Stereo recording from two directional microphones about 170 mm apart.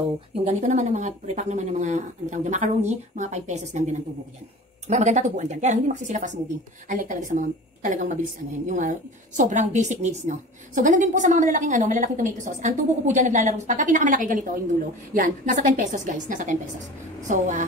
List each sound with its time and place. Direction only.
0.5 s a woman's voice: 40° right (ahead or behind)